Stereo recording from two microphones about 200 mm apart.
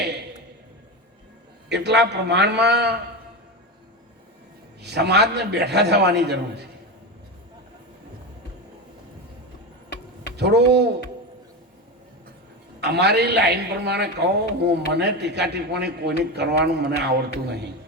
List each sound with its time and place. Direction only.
1.7 s a man's voice: 60° right (ahead or behind)
4.8 s a man's voice: 55° right (ahead or behind)
10.3 s a man's voice: 55° right (ahead or behind)
12.8 s a man's voice: 55° right (ahead or behind)